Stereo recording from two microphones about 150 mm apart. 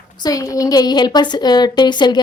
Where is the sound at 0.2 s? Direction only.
25° left (ahead or behind).